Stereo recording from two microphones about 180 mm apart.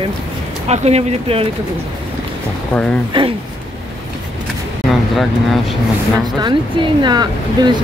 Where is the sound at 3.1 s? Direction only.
30° right (ahead or behind).